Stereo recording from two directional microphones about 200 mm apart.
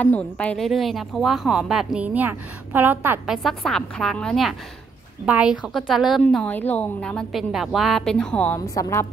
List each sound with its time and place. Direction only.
0.0 s speech: 5° left (ahead or behind); by 3.3 s 10° right (ahead or behind)
3.4 s speech: centre (ahead or behind)
8.5 s a woman's voice: 15° left (ahead or behind)